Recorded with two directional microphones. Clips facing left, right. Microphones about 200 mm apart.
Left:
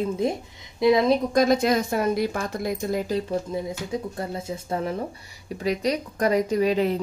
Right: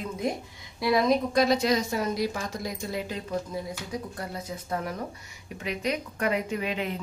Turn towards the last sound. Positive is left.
turn(degrees=35)  # may be behind; listen again after turning